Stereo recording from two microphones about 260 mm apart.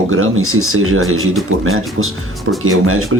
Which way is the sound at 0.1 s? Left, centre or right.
Right.